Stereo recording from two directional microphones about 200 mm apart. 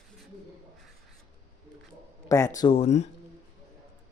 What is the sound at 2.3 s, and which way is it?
Speech, 15° left (ahead or behind).